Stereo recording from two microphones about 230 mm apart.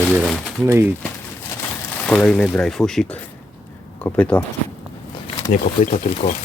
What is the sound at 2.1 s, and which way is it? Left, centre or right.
Speech, centre.